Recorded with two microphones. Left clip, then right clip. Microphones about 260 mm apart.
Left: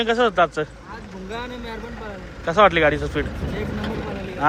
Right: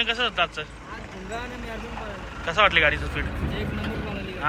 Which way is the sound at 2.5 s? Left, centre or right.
Left.